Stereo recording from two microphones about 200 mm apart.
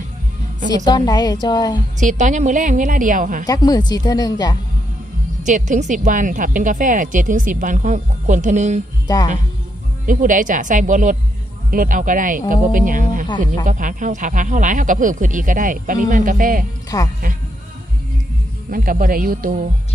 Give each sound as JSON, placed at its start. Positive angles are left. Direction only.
{"t": 0.9, "sound": "a woman's voice", "side_deg": 20}
{"t": 2.0, "sound": "a woman's voice", "side_deg": -40}
{"t": 3.4, "sound": "a woman's voice", "side_deg": 20}
{"t": 5.5, "sound": "a woman's voice", "side_deg": -40}
{"t": 9.0, "sound": "speech", "side_deg": 20}
{"t": 10.1, "sound": "a woman's voice", "side_deg": -40}
{"t": 16.9, "sound": "speech", "side_deg": 20}
{"t": 18.7, "sound": "speech", "side_deg": -45}